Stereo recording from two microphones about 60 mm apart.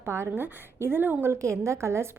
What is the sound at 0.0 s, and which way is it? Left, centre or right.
A woman's voice, right.